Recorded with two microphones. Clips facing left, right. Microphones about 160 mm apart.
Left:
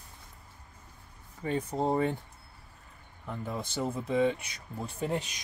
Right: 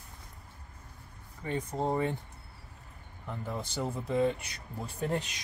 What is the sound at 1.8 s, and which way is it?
Speech, 20° left (ahead or behind).